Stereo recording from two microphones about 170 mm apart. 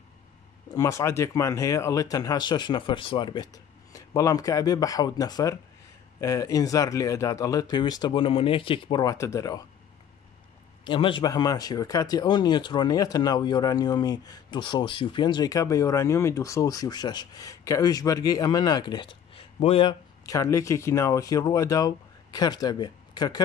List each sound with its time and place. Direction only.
0.7 s speech: 20° left (ahead or behind)
10.8 s speech: 30° left (ahead or behind)